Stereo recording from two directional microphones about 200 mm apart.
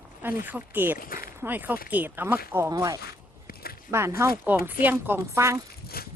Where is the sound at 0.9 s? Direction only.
45° left (ahead or behind).